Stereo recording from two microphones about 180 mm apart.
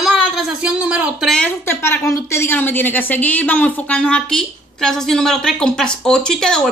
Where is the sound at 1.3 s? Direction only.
10° left (ahead or behind).